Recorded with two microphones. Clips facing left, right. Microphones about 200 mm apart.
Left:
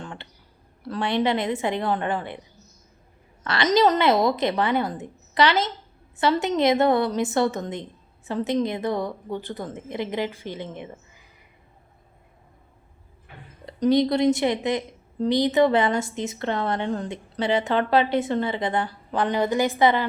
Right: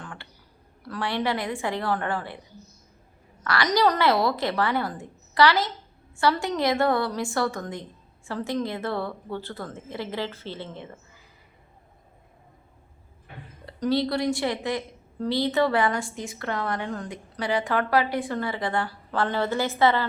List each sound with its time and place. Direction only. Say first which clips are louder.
0.0 s a sound: left 4 dB; 25° left (ahead or behind)
0.9 s a woman's voice: left 4 dB; 20° left (ahead or behind)
3.4 s a woman's voice: left 3 dB; 25° left (ahead or behind)
13.7 s a woman's voice: left 5 dB; 20° left (ahead or behind)